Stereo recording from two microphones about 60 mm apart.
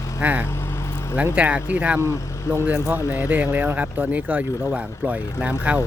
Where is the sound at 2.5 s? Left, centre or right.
Right.